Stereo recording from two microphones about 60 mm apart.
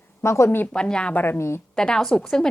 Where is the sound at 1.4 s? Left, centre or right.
Left.